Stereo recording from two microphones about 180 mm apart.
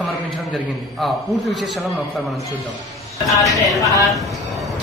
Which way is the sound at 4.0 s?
Centre (ahead or behind).